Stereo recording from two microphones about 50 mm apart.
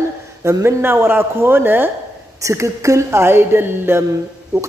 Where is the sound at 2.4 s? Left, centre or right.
Right.